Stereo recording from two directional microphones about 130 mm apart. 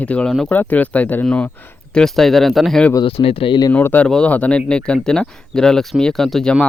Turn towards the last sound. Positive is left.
turn(degrees=5)  # may be behind; listen again after turning